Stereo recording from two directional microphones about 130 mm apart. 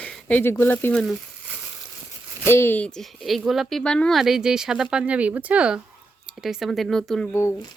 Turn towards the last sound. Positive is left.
turn(degrees=5)  # may be behind; listen again after turning